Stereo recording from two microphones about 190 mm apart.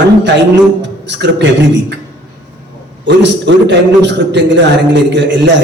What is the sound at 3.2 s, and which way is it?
Speech, 65° right (ahead or behind).